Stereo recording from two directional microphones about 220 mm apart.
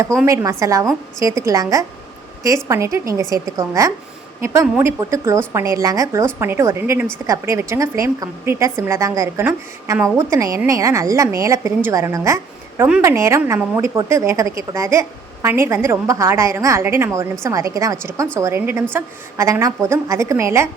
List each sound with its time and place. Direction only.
0.3 s a woman's voice: 15° right (ahead or behind)